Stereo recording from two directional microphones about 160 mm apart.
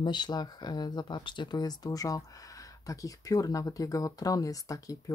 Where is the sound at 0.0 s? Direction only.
30° left (ahead or behind).